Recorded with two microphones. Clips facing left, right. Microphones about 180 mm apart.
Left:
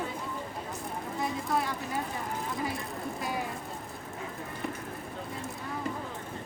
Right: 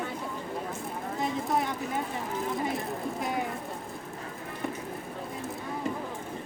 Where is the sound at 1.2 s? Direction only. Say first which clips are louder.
Right 2 dB; 20° right (ahead or behind).